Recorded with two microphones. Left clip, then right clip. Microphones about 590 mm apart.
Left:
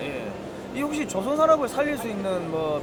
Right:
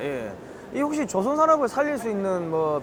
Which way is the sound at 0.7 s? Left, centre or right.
Right.